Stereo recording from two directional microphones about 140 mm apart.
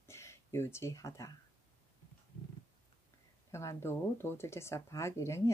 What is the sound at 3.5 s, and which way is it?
Speech, 20° left (ahead or behind).